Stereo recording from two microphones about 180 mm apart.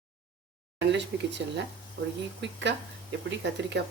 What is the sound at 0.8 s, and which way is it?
Speech, 75° right (ahead or behind).